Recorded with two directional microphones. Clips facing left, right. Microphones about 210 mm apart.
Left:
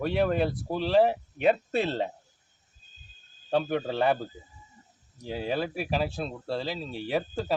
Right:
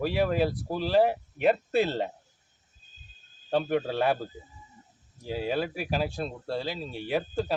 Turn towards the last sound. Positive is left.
turn(degrees=0)  # may be behind; listen again after turning